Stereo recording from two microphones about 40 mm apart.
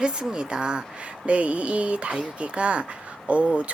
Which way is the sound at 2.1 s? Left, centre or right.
Right.